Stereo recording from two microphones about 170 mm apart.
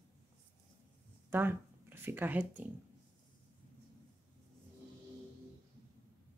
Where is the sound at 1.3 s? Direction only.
10° right (ahead or behind).